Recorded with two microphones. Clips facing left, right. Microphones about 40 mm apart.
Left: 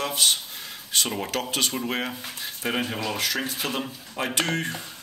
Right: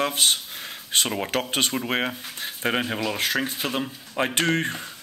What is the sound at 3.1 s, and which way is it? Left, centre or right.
Speech, right.